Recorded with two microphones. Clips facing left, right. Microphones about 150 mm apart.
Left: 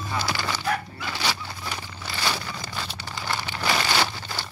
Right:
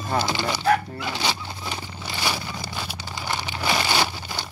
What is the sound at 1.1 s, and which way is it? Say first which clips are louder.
Zipper: right 1 dB; 20° right (ahead or behind).